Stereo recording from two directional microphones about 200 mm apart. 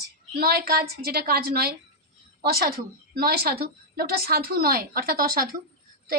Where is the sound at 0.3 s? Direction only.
50° right (ahead or behind).